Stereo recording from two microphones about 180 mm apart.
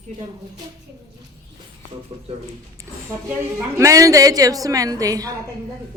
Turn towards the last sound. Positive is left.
turn(degrees=-20)  # may be behind; listen again after turning